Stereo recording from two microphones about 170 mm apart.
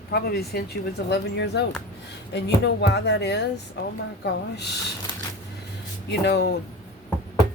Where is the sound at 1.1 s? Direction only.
90° left.